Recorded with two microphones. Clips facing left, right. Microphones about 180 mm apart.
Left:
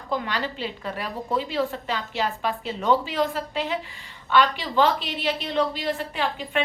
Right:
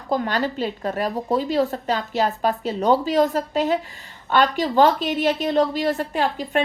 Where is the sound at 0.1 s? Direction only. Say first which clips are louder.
Right 5 dB; 45° right (ahead or behind).